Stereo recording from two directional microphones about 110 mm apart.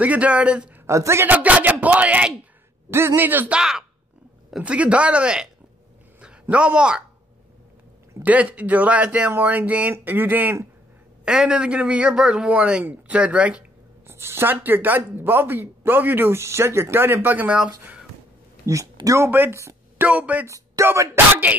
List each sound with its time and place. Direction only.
0.0 s speech: 15° right (ahead or behind)
0.8 s speech: 25° right (ahead or behind); by 5.5 s 10° right (ahead or behind)
6.5 s speech: 10° right (ahead or behind)
8.2 s speech: 15° right (ahead or behind)
11.2 s speech: 5° right (ahead or behind)
14.0 s speech: 20° right (ahead or behind)
18.6 s speech: 30° right (ahead or behind)
20.1 s speech: 10° right (ahead or behind)
20.4 s speech: 30° right (ahead or behind)